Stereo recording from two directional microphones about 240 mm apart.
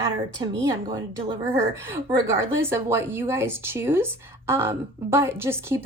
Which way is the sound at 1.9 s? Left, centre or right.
Centre.